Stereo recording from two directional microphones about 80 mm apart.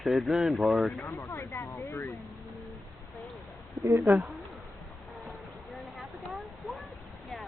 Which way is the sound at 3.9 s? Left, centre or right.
Right.